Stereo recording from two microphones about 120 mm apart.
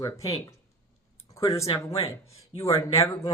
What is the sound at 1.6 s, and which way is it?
Speech, 55° left (ahead or behind).